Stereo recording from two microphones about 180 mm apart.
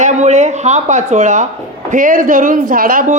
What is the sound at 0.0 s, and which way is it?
A woman's voice, 40° right (ahead or behind).